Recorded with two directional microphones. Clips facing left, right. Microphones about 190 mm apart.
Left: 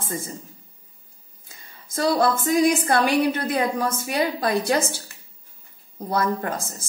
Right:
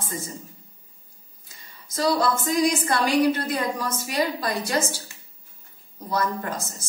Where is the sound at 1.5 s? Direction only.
50° left (ahead or behind).